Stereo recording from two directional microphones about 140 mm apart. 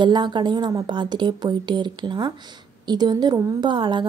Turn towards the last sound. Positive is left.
turn(degrees=-35)  # may be behind; listen again after turning